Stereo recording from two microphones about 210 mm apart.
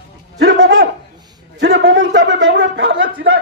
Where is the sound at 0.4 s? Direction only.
60° right (ahead or behind).